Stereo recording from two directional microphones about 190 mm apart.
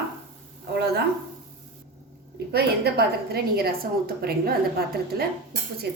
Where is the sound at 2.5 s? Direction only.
55° right (ahead or behind).